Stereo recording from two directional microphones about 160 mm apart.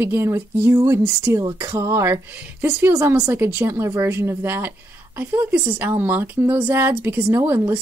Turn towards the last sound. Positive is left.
turn(degrees=-15)  # may be behind; listen again after turning